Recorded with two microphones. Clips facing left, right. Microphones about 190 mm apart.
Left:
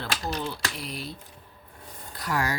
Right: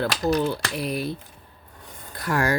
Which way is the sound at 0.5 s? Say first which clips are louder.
Right 8 dB; 60° right (ahead or behind).